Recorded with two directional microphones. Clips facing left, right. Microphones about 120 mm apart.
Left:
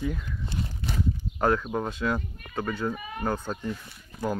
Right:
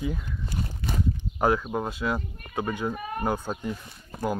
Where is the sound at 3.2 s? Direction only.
10° right (ahead or behind).